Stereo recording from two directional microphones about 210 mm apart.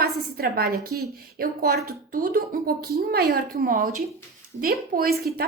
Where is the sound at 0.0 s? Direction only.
45° right (ahead or behind).